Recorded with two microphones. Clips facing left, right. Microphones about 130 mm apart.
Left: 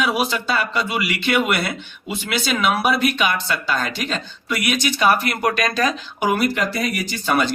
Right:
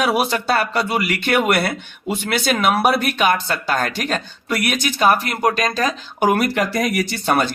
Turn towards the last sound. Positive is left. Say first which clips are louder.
# right 2 dB
turn(degrees=-45)  # may be behind; listen again after turning